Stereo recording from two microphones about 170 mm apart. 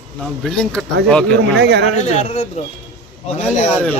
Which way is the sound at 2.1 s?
40° left (ahead or behind).